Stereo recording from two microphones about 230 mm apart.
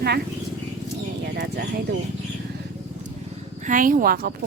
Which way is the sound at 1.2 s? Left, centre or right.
Right.